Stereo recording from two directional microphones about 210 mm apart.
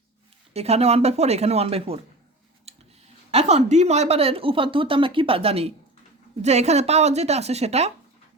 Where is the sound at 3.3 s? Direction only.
30° right (ahead or behind).